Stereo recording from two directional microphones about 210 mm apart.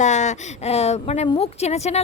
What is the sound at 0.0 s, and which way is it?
A woman's voice, 35° left (ahead or behind).